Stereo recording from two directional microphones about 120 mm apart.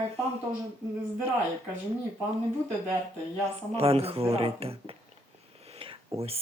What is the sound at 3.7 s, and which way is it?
Speech, 55° right (ahead or behind).